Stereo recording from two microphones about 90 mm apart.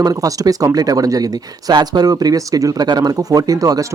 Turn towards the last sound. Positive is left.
turn(degrees=-45)  # may be behind; listen again after turning